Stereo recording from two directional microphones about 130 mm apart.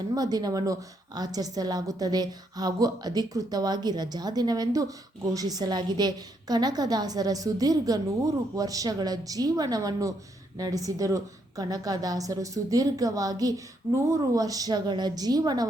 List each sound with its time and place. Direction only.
0.1 s a woman's voice: 30° right (ahead or behind)